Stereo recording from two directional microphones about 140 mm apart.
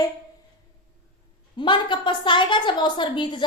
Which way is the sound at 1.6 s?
35° left (ahead or behind).